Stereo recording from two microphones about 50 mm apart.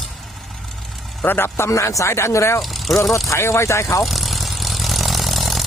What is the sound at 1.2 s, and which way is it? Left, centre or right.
A man's voice, left.